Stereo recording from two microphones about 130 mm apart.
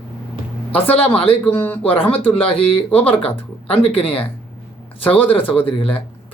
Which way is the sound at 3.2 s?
45° left (ahead or behind).